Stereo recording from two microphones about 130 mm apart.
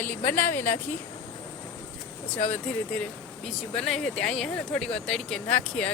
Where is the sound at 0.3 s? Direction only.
20° left (ahead or behind).